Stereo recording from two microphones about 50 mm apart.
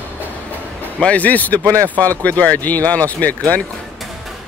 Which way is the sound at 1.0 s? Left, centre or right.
Left.